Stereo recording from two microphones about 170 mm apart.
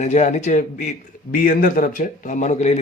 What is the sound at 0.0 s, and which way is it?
A man's voice, 40° left (ahead or behind).